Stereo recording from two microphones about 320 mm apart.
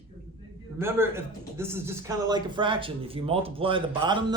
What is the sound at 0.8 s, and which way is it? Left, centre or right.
Speech, centre.